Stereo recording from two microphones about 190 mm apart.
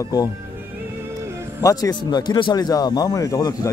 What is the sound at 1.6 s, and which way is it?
Speech, 20° left (ahead or behind).